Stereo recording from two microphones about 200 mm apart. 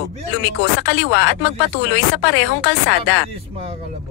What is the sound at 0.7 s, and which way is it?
Speech, 65° left (ahead or behind).